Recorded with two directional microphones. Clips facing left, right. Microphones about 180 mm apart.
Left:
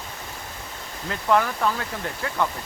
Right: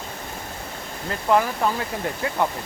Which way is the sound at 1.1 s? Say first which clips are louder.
Right 1 dB; 10° right (ahead or behind).